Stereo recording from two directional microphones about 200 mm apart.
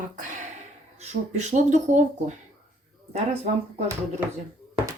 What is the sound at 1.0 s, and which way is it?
Speech, 35° right (ahead or behind).